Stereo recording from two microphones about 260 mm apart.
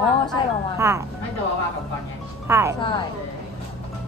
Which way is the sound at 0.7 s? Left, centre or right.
Centre.